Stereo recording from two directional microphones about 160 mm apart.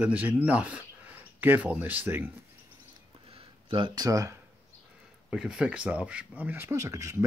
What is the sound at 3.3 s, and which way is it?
Speech, 30° right (ahead or behind).